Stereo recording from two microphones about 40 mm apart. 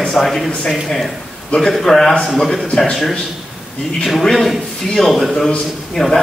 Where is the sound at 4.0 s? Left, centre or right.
Centre.